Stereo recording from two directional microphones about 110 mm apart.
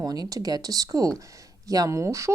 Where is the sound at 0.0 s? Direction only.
35° right (ahead or behind).